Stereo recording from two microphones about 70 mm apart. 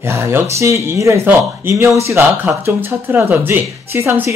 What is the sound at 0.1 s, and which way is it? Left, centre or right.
Speech, right.